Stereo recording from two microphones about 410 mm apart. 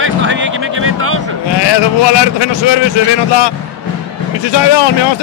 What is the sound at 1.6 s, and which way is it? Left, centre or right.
Speech, left.